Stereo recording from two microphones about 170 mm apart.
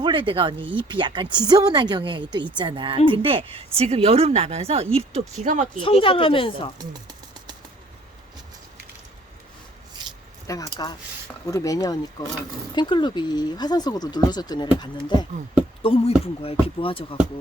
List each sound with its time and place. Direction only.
0.0 s a woman's voice: 30° right (ahead or behind)
5.8 s speech: 30° left (ahead or behind)
10.4 s speech: 20° left (ahead or behind)